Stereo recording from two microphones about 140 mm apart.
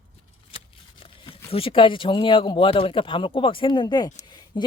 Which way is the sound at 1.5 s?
40° left (ahead or behind).